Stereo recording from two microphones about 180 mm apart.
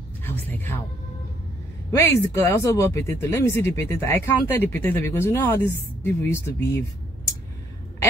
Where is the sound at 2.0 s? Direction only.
15° left (ahead or behind).